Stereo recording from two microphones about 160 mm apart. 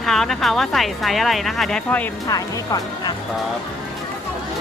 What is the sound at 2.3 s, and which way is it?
Speech, 25° left (ahead or behind).